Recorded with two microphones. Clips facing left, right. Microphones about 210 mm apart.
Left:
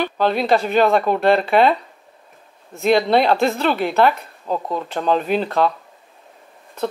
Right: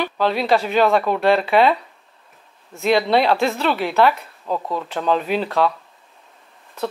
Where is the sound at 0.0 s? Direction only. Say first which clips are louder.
Left 1 dB; 50° left (ahead or behind).